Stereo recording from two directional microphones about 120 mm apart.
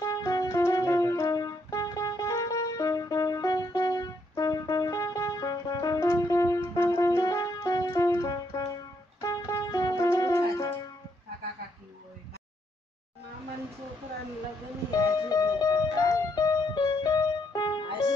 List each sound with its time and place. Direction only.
0.0 s music: 30° left (ahead or behind)
15.2 s music: 35° left (ahead or behind)